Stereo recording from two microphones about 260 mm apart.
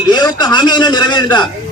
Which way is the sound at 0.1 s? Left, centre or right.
Centre.